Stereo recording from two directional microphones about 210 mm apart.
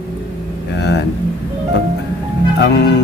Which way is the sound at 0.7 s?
55° left (ahead or behind).